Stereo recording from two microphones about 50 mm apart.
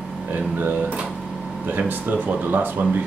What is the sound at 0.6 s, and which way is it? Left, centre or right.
Speech, right.